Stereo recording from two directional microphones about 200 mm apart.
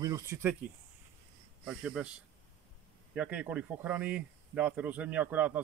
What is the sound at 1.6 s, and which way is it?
Speech, 5° right (ahead or behind).